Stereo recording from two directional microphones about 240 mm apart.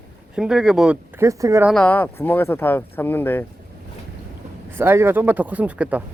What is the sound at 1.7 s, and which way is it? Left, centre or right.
Speech, centre.